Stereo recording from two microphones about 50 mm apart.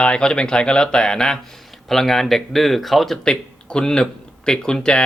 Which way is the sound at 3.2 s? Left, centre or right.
Centre.